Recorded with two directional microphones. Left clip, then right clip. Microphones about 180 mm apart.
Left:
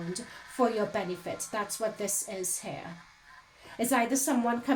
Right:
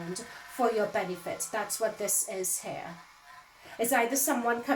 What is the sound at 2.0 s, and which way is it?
Speech, 45° left (ahead or behind).